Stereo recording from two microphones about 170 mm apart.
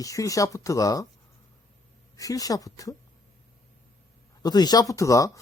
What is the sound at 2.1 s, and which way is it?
Speech, 20° left (ahead or behind).